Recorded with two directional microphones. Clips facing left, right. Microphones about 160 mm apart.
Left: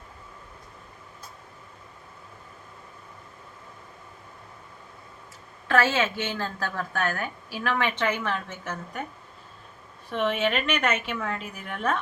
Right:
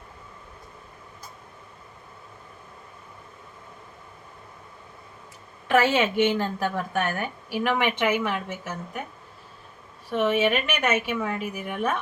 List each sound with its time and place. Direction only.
5.6 s a woman's voice: 15° right (ahead or behind)
10.1 s a woman's voice: 10° right (ahead or behind)